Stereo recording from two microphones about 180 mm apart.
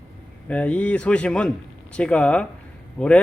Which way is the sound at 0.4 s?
10° left (ahead or behind).